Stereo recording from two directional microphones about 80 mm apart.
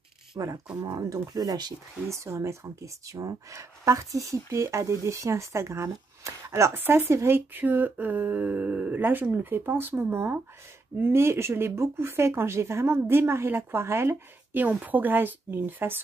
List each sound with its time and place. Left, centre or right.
0.3 s speech: right
2.0 s speech: right